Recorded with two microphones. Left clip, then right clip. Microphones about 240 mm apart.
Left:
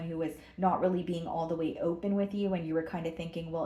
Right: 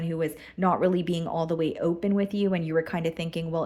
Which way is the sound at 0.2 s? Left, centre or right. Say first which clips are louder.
Right 3 dB; right.